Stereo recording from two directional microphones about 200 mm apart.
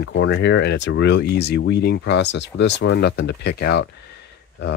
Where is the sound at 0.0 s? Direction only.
65° left (ahead or behind).